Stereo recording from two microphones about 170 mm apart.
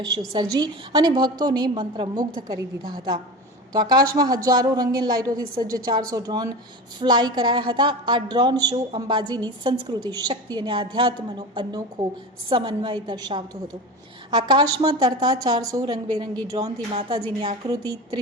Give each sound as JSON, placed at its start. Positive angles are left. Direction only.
{"t": 0.0, "sound": "a woman's voice", "side_deg": -20}
{"t": 3.7, "sound": "a woman's voice", "side_deg": -25}